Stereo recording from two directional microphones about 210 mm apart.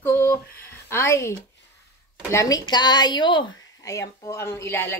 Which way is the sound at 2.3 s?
15° left (ahead or behind).